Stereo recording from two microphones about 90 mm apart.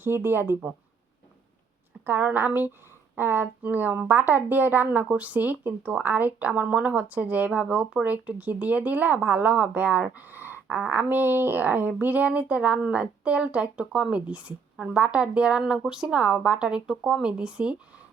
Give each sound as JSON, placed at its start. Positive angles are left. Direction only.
{"t": 0.0, "sound": "a woman's voice", "side_deg": -25}
{"t": 2.0, "sound": "a woman's voice", "side_deg": -20}